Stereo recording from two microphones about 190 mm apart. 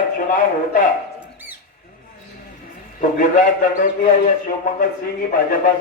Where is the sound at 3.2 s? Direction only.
45° left (ahead or behind).